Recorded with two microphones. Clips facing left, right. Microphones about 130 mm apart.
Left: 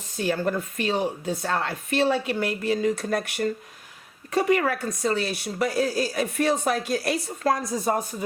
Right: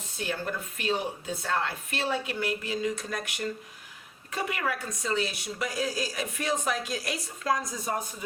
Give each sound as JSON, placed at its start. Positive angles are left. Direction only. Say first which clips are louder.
{"t": 0.3, "sound": "a woman's voice", "louder": "left 9 dB", "side_deg": 45}